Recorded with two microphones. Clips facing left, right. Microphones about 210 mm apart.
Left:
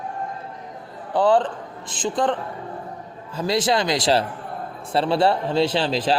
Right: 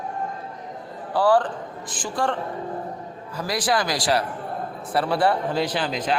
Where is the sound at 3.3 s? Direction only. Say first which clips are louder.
Left 3 dB; 25° left (ahead or behind).